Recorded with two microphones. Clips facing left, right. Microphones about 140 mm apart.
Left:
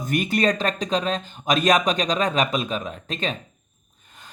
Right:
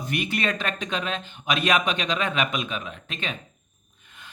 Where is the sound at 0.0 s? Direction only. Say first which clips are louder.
Left 6 dB; 45° left (ahead or behind).